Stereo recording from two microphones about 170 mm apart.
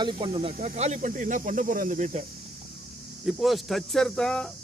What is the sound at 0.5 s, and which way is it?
Speech, 45° right (ahead or behind).